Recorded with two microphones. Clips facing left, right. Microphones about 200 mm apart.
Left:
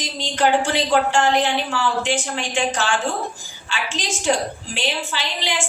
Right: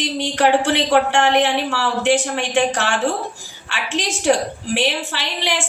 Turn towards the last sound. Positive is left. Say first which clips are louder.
# right 2 dB
turn(degrees=-65)  # may be behind; listen again after turning